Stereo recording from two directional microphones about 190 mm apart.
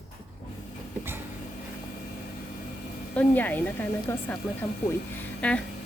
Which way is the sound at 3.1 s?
10° left (ahead or behind).